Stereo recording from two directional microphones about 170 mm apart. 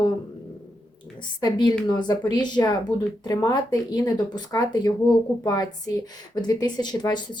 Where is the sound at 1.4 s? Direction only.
25° left (ahead or behind).